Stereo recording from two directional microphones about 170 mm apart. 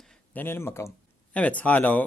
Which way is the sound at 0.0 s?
5° left (ahead or behind).